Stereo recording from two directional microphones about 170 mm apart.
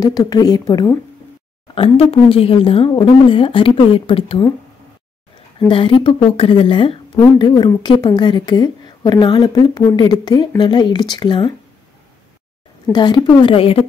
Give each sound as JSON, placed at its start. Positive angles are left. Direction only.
{"t": 0.0, "sound": "a woman's voice", "side_deg": 20}
{"t": 1.8, "sound": "a woman's voice", "side_deg": 35}
{"t": 5.7, "sound": "a woman's voice", "side_deg": 30}
{"t": 12.9, "sound": "a woman's voice", "side_deg": 25}